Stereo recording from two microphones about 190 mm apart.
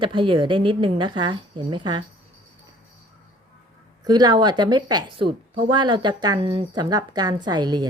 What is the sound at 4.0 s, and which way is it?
A woman's voice, 20° right (ahead or behind).